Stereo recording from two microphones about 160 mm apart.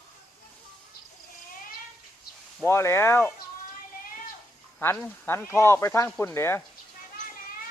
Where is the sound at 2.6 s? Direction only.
15° left (ahead or behind).